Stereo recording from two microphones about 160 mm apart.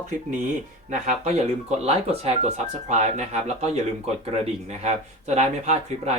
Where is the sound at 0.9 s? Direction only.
50° right (ahead or behind).